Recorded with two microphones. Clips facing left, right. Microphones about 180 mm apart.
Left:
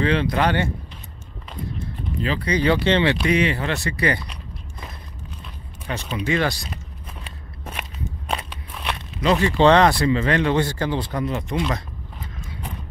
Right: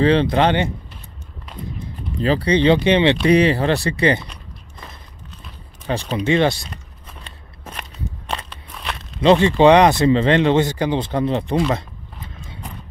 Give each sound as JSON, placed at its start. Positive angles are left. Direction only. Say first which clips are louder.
{"t": 0.0, "sound": "speech", "louder": "right 5 dB", "side_deg": -30}
{"t": 2.2, "sound": "speech", "louder": "right 6 dB", "side_deg": -35}
{"t": 3.2, "sound": "speech", "louder": "right 6 dB", "side_deg": -35}
{"t": 4.3, "sound": "walk", "louder": "left 2 dB", "side_deg": 5}
{"t": 5.9, "sound": "speech", "louder": "right 5 dB", "side_deg": -35}
{"t": 7.2, "sound": "a sound", "louder": "even", "side_deg": 5}
{"t": 9.2, "sound": "speech", "louder": "right 6 dB", "side_deg": -30}
{"t": 9.6, "sound": "speech", "louder": "even", "side_deg": -15}